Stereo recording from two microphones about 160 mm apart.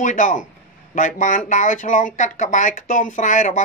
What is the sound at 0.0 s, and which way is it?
Speech, 55° left (ahead or behind).